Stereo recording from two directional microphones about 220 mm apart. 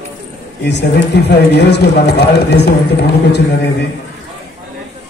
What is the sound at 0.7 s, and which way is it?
Speech, 50° left (ahead or behind).